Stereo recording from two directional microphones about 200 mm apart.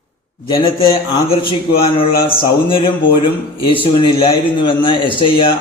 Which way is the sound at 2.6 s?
25° left (ahead or behind).